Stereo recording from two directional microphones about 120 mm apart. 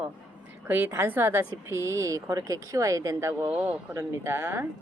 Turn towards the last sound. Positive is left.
turn(degrees=-20)  # may be behind; listen again after turning